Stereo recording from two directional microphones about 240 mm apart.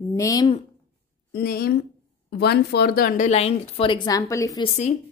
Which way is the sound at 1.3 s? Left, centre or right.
Left.